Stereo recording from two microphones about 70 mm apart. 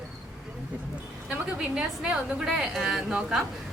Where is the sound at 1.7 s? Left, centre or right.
Centre.